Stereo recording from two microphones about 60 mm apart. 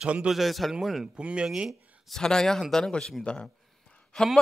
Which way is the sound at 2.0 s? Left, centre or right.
Centre.